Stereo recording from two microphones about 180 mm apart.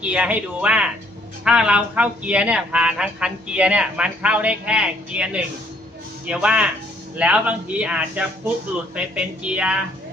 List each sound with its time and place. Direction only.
0.0 s a man's voice: 5° right (ahead or behind)